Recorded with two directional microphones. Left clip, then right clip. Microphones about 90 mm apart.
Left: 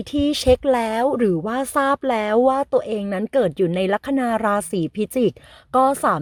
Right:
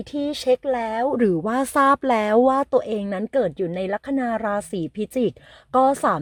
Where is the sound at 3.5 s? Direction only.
50° left (ahead or behind); by 5.3 s 35° left (ahead or behind).